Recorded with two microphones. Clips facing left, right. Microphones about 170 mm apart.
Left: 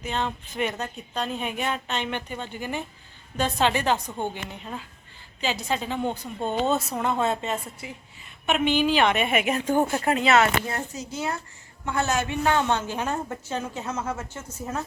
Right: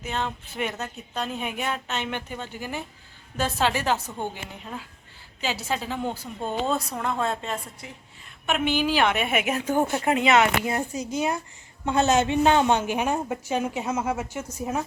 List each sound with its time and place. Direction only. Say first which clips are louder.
0.0 s a woman's voice: left 1 dB; 5° right (ahead or behind)
6.4 s speech: left 2 dB; 25° left (ahead or behind)
6.8 s a woman's voice: left 2 dB; 5° left (ahead or behind)
8.4 s a woman's voice: left 2 dB; 5° right (ahead or behind)